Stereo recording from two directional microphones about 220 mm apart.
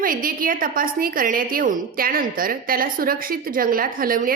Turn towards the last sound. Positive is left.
turn(degrees=-40)  # may be behind; listen again after turning